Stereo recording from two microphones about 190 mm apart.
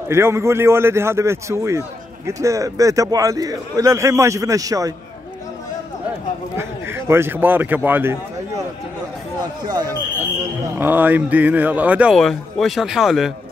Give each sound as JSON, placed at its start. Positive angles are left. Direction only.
{"t": 0.1, "sound": "a man's voice", "side_deg": -15}
{"t": 6.5, "sound": "speech", "side_deg": -10}
{"t": 9.7, "sound": "speech", "side_deg": -20}
{"t": 10.8, "sound": "a man's voice", "side_deg": -10}